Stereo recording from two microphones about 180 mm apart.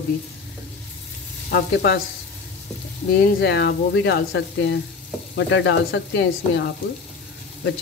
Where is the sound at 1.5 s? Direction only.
65° left (ahead or behind).